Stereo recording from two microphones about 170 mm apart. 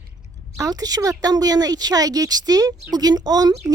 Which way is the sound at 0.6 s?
20° right (ahead or behind).